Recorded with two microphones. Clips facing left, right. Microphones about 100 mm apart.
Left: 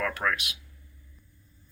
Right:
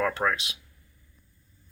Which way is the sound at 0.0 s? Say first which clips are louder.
Right 3 dB; 25° right (ahead or behind).